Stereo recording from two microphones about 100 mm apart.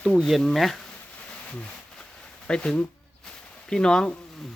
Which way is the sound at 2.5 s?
10° left (ahead or behind).